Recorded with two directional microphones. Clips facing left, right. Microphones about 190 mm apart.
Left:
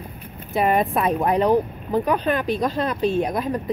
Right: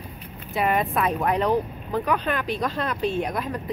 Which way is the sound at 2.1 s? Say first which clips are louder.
Left 3 dB; 30° left (ahead or behind).